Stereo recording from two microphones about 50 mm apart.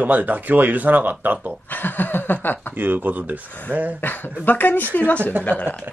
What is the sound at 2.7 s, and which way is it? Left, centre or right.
Speech, right.